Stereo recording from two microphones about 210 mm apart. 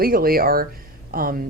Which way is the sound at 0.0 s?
45° right (ahead or behind).